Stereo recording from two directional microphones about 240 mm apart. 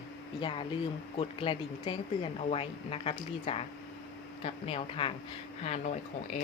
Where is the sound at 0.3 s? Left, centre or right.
Centre.